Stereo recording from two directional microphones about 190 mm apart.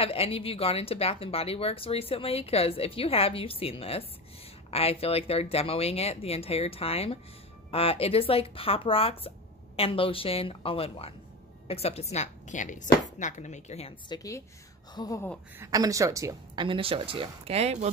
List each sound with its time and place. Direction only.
0.0 s a woman's voice: 30° left (ahead or behind)
15.6 s speech: 20° right (ahead or behind); by 17.9 s 35° right (ahead or behind)